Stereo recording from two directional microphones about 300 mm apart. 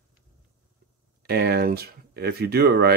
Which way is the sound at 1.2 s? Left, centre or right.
Right.